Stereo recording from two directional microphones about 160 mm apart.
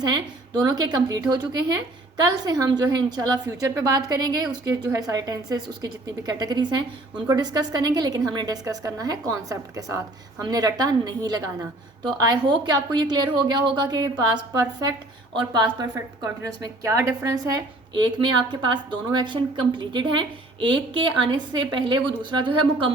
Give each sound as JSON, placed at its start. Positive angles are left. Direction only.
{"t": 0.0, "sound": "a woman's voice", "side_deg": -25}